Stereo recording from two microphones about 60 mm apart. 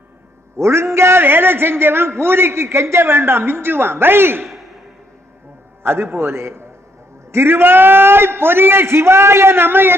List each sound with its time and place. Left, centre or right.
0.6 s a man's voice: right
5.8 s a man's voice: right